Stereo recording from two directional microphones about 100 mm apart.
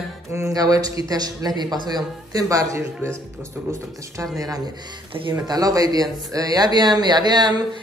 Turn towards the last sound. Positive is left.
turn(degrees=-45)  # may be behind; listen again after turning